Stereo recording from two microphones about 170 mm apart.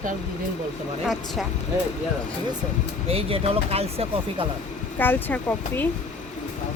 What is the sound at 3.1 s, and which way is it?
Speech, 35° right (ahead or behind).